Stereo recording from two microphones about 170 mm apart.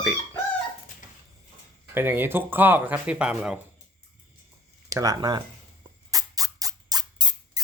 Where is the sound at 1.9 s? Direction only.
15° right (ahead or behind).